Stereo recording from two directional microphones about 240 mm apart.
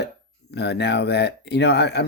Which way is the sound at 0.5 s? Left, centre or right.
Left.